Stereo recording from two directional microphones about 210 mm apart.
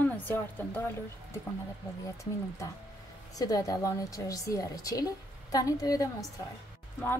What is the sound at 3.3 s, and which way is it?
A woman's voice, 15° left (ahead or behind).